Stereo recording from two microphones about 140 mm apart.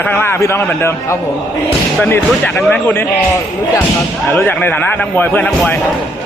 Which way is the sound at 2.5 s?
5° left (ahead or behind).